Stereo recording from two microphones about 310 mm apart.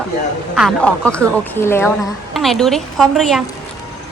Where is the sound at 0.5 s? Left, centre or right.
Centre.